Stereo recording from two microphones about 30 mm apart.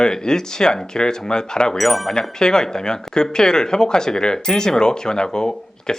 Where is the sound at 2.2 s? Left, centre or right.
Left.